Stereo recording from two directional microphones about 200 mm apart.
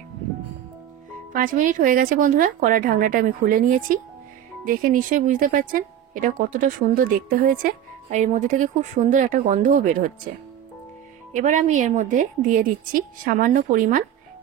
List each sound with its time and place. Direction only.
1.3 s a woman's voice: 40° right (ahead or behind)
11.3 s a woman's voice: 40° right (ahead or behind)